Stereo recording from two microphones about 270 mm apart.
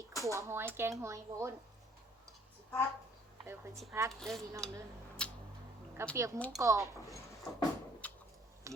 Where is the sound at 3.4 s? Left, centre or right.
Centre.